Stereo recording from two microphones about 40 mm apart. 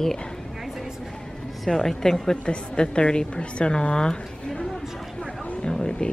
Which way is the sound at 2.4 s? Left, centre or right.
Left.